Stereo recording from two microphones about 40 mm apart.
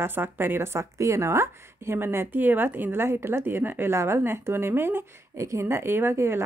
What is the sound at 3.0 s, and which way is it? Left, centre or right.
Speech, right.